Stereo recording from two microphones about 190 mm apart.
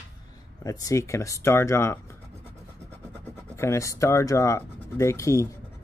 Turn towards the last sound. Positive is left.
turn(degrees=15)  # may be behind; listen again after turning